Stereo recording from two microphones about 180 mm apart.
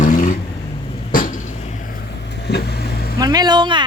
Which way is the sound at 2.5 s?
70° left (ahead or behind).